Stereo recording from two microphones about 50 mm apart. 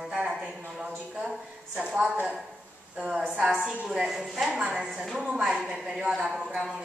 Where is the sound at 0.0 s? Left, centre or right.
Centre.